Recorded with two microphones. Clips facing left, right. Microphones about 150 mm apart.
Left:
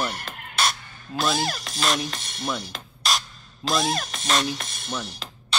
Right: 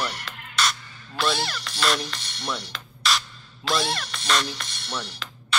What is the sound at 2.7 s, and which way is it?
Music, 45° left (ahead or behind).